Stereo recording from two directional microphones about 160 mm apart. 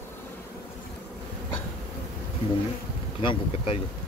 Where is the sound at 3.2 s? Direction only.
30° left (ahead or behind).